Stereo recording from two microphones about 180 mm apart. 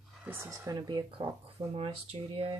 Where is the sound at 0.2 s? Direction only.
10° right (ahead or behind); by 2.6 s 30° right (ahead or behind).